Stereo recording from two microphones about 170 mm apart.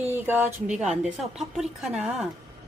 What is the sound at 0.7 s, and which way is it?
Speech, 40° right (ahead or behind).